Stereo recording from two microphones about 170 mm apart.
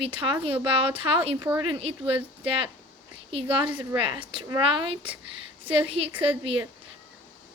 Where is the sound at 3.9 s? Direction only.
30° right (ahead or behind).